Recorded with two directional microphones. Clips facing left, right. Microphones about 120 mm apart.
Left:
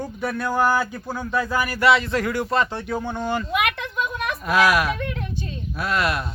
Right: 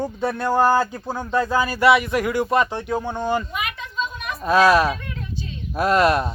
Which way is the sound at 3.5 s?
70° left (ahead or behind).